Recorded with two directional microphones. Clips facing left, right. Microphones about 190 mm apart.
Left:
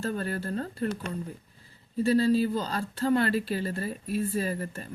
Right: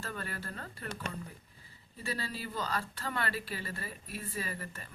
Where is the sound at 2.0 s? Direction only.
25° left (ahead or behind).